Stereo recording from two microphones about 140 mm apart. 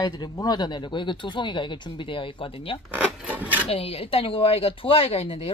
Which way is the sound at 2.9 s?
10° right (ahead or behind).